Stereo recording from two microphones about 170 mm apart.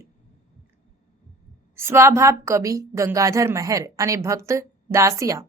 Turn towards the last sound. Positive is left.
turn(degrees=-20)  # may be behind; listen again after turning